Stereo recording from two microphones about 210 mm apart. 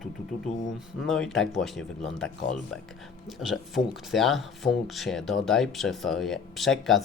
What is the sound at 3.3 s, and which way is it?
Speech, centre (ahead or behind).